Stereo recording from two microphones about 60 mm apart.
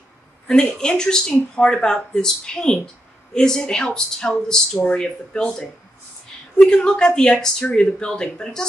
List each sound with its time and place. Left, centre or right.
0.5 s speech: centre